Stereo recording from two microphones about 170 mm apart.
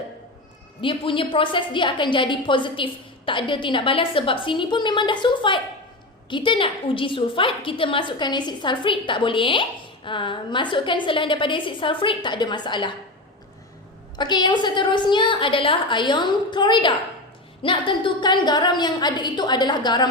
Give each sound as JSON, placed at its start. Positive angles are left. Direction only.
{"t": 0.8, "sound": "a woman's voice", "side_deg": 30}
{"t": 14.2, "sound": "a woman's voice", "side_deg": 25}